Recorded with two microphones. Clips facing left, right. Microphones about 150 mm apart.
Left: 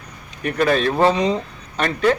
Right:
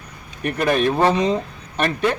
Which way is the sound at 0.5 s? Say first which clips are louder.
Left 1 dB; 15° right (ahead or behind).